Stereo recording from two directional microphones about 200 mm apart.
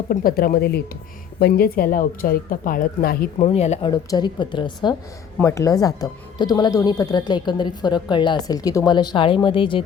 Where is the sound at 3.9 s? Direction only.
20° left (ahead or behind).